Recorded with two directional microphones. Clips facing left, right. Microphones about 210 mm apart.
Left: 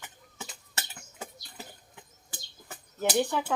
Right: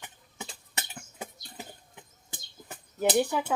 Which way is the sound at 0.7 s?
15° right (ahead or behind).